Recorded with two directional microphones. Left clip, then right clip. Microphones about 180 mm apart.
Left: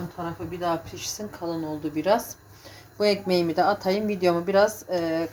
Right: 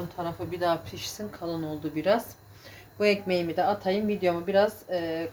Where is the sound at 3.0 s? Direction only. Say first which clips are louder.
Left 2 dB; 5° left (ahead or behind).